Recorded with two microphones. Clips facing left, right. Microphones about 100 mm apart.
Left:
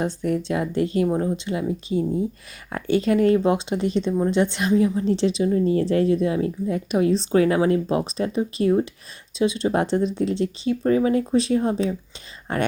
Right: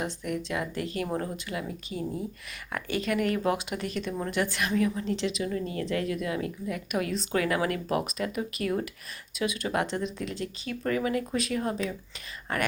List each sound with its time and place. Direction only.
0.0 s a woman's voice: 30° left (ahead or behind)